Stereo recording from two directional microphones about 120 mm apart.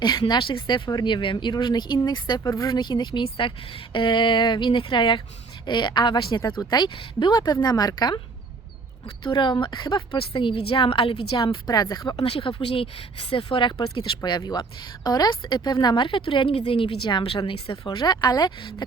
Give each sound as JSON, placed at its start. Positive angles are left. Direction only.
{"t": 0.0, "sound": "a woman's voice", "side_deg": 35}
{"t": 12.1, "sound": "a woman's voice", "side_deg": 50}